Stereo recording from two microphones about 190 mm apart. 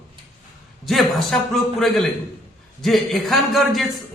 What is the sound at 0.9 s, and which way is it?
Speech, centre (ahead or behind).